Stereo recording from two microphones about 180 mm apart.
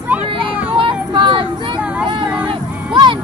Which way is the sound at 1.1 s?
25° right (ahead or behind).